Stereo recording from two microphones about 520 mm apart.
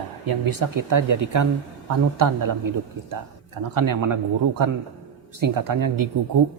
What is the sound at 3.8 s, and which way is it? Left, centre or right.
Speech, right.